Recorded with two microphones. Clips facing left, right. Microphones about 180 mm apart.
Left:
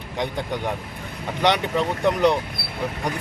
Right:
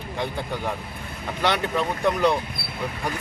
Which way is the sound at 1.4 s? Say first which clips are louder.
Left 3 dB; 15° left (ahead or behind).